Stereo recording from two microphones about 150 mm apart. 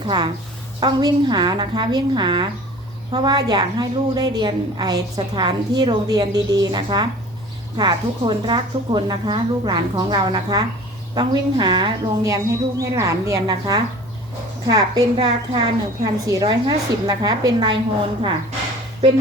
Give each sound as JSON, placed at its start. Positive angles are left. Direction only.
{"t": 0.0, "sound": "a woman's voice", "side_deg": -30}